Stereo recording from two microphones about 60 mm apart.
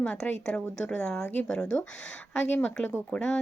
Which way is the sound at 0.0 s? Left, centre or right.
Centre.